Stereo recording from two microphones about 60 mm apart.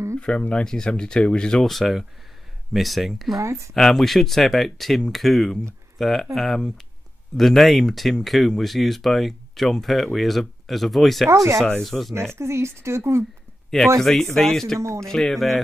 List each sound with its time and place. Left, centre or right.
0.2 s speech: centre
1.7 s speech: centre
3.3 s speech: right
3.7 s speech: centre
11.2 s speech: right
11.8 s speech: centre
12.4 s speech: right
13.7 s speech: centre